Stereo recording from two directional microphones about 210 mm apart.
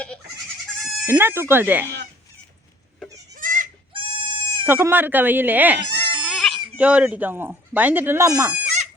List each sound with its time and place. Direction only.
1.0 s speech: 10° right (ahead or behind)
3.3 s goat: 40° right (ahead or behind)
3.9 s goat: 25° right (ahead or behind)
4.6 s speech: 10° right (ahead or behind)